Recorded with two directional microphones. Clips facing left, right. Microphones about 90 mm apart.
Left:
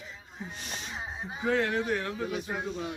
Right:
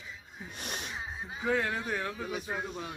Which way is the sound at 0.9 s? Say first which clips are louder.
Left 2 dB; 25° left (ahead or behind).